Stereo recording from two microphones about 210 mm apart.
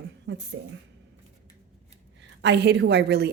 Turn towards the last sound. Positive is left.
turn(degrees=-50)  # may be behind; listen again after turning